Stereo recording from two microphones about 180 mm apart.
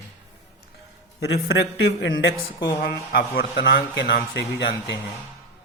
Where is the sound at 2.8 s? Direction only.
55° left (ahead or behind); by 4.9 s 70° left (ahead or behind).